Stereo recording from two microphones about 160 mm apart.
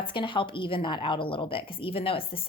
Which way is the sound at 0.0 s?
30° left (ahead or behind).